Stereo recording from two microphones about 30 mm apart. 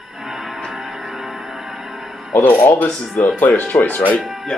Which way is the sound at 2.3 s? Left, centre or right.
Left.